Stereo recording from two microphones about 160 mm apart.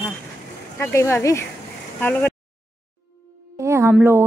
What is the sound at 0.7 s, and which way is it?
Speech, 15° left (ahead or behind).